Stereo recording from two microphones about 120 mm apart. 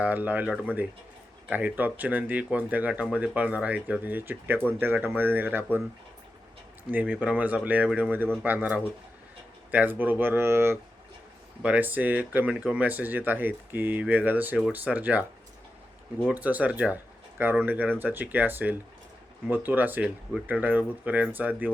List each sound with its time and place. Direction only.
0.0 s speech: 15° right (ahead or behind)
6.9 s speech: 15° right (ahead or behind)
16.3 s speech: 15° right (ahead or behind)